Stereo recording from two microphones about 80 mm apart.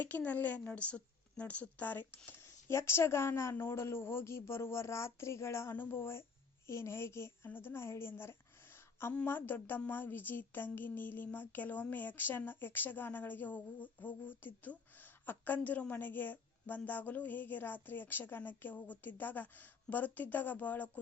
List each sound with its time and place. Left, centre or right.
0.0 s speech: left
2.4 s a woman's voice: left